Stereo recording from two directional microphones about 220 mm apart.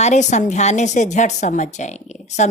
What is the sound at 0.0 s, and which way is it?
A woman's voice, 30° left (ahead or behind).